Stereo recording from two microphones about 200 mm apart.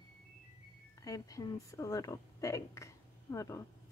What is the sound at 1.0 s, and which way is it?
Speech, 15° left (ahead or behind).